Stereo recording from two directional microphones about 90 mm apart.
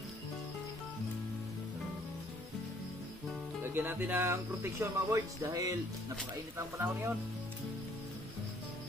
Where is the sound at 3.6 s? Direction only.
25° right (ahead or behind); by 5.7 s 40° right (ahead or behind).